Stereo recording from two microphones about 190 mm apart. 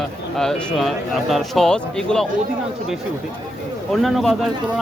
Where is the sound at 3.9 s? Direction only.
Centre (ahead or behind).